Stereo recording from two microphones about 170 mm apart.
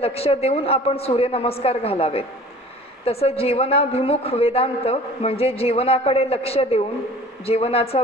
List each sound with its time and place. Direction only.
0.0 s a man's voice: 35° left (ahead or behind)